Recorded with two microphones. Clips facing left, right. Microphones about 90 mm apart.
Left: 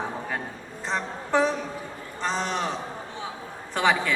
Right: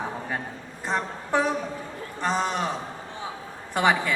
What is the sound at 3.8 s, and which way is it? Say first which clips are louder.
Speech: right 1 dB; 15° right (ahead or behind).